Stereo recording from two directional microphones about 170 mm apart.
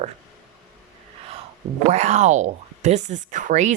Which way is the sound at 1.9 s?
40° right (ahead or behind).